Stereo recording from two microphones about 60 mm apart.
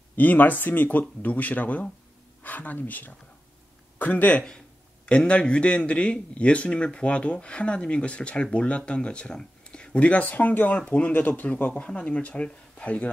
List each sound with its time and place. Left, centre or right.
0.1 s speech: left